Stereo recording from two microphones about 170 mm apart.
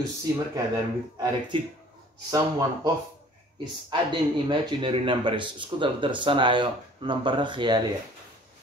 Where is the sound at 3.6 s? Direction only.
25° right (ahead or behind).